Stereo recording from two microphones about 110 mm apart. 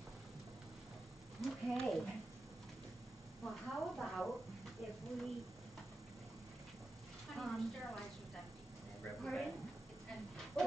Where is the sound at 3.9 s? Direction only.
Centre (ahead or behind).